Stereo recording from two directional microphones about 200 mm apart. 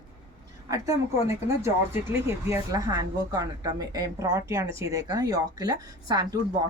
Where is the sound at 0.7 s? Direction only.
15° right (ahead or behind).